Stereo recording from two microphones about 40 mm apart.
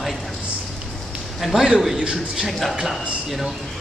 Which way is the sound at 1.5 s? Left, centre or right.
Right.